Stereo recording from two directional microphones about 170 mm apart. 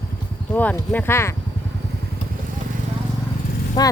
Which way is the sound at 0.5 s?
10° left (ahead or behind).